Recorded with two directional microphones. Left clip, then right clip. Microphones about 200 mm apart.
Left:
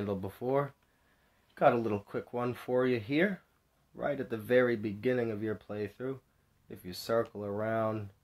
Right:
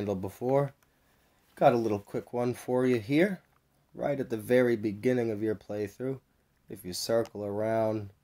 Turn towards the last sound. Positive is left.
turn(degrees=-30)  # may be behind; listen again after turning